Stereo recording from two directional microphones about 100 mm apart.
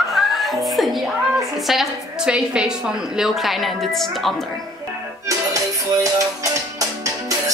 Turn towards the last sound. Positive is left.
turn(degrees=-35)  # may be behind; listen again after turning